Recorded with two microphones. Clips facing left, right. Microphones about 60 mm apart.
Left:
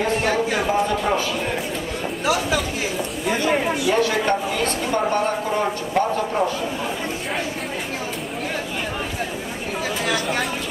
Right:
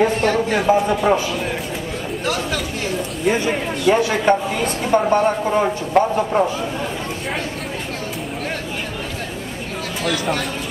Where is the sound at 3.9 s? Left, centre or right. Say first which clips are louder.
Right 6 dB; centre.